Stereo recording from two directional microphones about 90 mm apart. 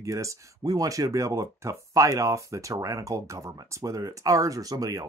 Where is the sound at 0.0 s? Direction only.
35° right (ahead or behind).